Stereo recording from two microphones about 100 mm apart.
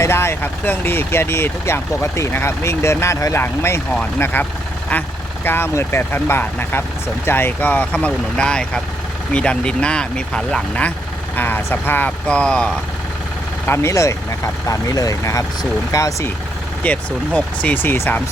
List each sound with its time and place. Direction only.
0.0 s speech: 25° left (ahead or behind)
5.5 s speech: 20° left (ahead or behind)
13.7 s speech: 30° left (ahead or behind)
16.8 s speech: 15° left (ahead or behind)